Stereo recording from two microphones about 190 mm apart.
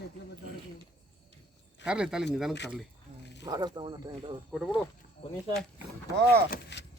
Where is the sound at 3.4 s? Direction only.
20° right (ahead or behind).